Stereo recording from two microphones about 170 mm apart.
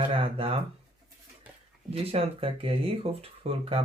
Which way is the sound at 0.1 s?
35° right (ahead or behind).